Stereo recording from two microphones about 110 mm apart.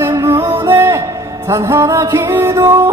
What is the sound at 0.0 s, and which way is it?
Music, 25° right (ahead or behind).